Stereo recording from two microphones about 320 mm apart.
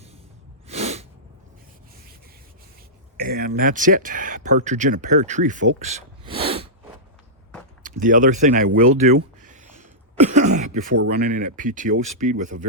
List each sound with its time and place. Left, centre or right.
0.7 s sneeze: centre
3.2 s speech: right
7.9 s speech: right
9.4 s a sound: right
10.3 s speech: right